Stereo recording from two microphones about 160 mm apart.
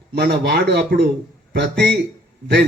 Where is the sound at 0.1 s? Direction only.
90° right.